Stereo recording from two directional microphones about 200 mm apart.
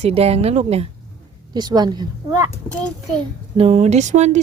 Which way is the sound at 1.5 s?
20° right (ahead or behind).